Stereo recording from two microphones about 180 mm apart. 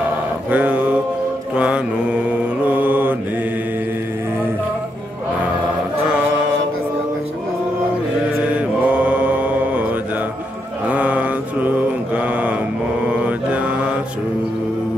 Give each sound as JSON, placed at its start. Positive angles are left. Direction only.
{"t": 0.5, "sound": "mantra", "side_deg": -10}
{"t": 6.0, "sound": "music", "side_deg": -5}
{"t": 8.5, "sound": "mantra", "side_deg": -5}
{"t": 10.9, "sound": "mantra", "side_deg": -10}